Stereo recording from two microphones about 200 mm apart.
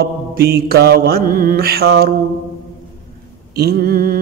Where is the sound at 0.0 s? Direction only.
50° right (ahead or behind).